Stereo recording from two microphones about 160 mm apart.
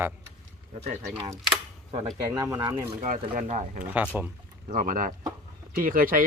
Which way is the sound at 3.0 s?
55° right (ahead or behind).